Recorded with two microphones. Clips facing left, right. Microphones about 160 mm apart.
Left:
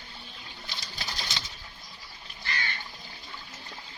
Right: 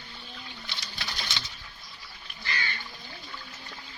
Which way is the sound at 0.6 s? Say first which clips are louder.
Left 2 dB; 35° left (ahead or behind).